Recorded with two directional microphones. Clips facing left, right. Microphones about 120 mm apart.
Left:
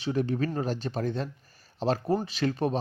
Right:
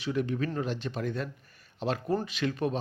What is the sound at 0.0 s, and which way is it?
A man's voice, 35° left (ahead or behind).